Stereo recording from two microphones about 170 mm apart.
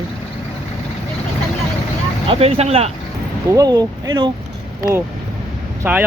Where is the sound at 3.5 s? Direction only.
20° right (ahead or behind).